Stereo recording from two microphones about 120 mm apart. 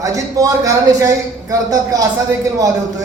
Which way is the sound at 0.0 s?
30° right (ahead or behind).